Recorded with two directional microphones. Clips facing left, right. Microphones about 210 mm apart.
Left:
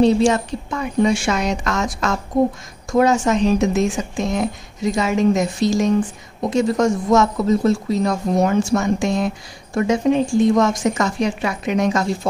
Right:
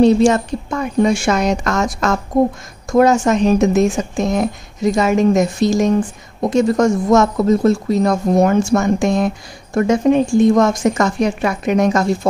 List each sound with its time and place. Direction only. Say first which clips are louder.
0.0 s speech: right 3 dB; 45° right (ahead or behind)